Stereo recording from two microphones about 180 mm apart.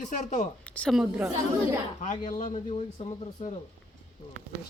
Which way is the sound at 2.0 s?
45° left (ahead or behind).